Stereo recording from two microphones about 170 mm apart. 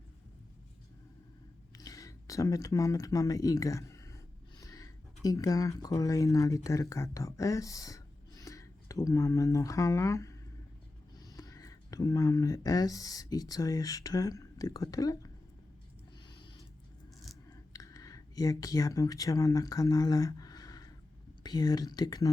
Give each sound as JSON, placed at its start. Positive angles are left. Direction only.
{"t": 1.7, "sound": "speech", "side_deg": 20}
{"t": 16.4, "sound": "a sound", "side_deg": 30}
{"t": 21.4, "sound": "speech", "side_deg": 25}